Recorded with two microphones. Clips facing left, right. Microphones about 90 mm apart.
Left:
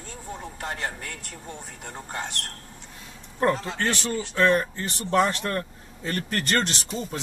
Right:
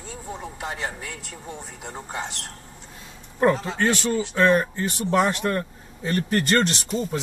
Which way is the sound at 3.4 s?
5° right (ahead or behind).